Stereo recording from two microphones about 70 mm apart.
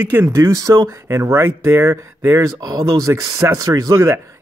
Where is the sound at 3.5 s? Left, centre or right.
Right.